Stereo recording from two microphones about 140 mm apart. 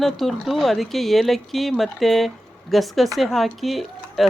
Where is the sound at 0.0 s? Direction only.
Centre (ahead or behind).